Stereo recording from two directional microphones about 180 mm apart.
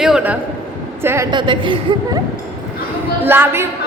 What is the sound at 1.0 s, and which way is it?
A woman's voice, 15° right (ahead or behind).